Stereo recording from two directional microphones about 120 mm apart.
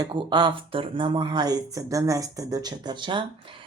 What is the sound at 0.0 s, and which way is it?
Speech, 40° right (ahead or behind).